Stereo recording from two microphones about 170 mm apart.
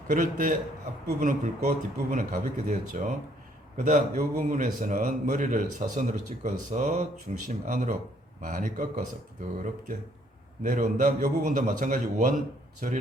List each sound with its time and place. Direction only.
0.1 s a man's voice: 50° right (ahead or behind)